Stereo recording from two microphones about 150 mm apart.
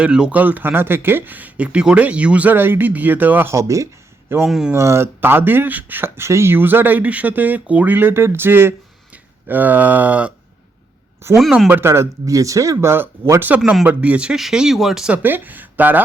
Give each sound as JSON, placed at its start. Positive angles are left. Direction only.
{"t": 0.0, "sound": "speech", "side_deg": -5}
{"t": 4.4, "sound": "speech", "side_deg": -5}
{"t": 4.7, "sound": "speech", "side_deg": -20}
{"t": 11.3, "sound": "speech", "side_deg": 0}
{"t": 11.7, "sound": "speech", "side_deg": -15}